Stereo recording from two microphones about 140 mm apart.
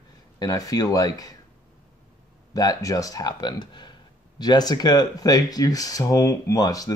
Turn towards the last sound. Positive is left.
turn(degrees=25)  # may be behind; listen again after turning